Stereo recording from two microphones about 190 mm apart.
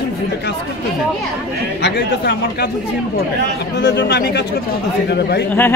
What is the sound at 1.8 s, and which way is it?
Speech, 65° left (ahead or behind).